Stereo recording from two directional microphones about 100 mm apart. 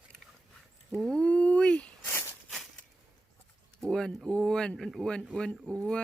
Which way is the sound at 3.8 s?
5° left (ahead or behind).